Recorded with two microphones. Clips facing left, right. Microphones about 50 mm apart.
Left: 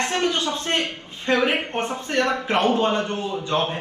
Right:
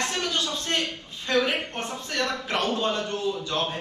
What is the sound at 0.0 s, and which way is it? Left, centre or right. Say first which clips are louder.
Speech: left 5 dB; left.